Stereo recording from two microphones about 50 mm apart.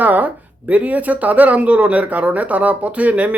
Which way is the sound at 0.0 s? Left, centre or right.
Right.